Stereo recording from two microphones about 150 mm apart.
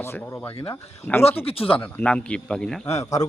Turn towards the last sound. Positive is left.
turn(degrees=20)  # may be behind; listen again after turning